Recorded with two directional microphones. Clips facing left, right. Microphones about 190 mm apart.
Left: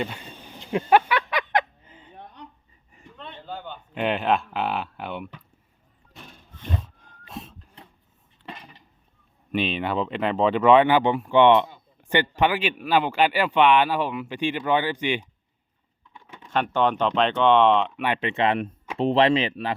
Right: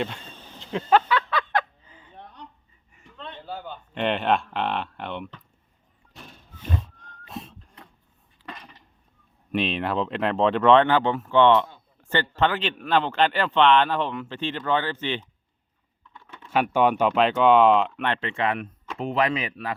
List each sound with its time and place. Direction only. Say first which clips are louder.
0.0 s a sound: even; 10° left (ahead or behind)
3.4 s speech: even; 5° right (ahead or behind)
6.1 s a sound: even; centre (ahead or behind)
8.4 s dishes: left 1 dB; centre (ahead or behind)
9.5 s speech: even; centre (ahead or behind)
16.1 s typing: left 1 dB; 15° left (ahead or behind)
16.5 s speech: right 2 dB; 10° right (ahead or behind)
18.0 s speech: left 2 dB; 15° left (ahead or behind)